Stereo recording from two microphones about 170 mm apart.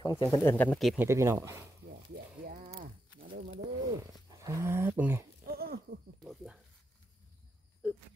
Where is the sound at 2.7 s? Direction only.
60° right (ahead or behind).